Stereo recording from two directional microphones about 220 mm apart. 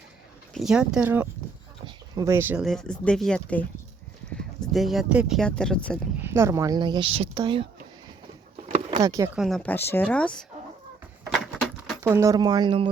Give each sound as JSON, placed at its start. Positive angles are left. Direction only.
{"t": 0.5, "sound": "speech", "side_deg": -5}
{"t": 6.1, "sound": "speech", "side_deg": -10}
{"t": 9.0, "sound": "speech", "side_deg": -15}
{"t": 9.4, "sound": "speech", "side_deg": 5}
{"t": 11.3, "sound": "a sound", "side_deg": 0}
{"t": 11.9, "sound": "speech", "side_deg": -10}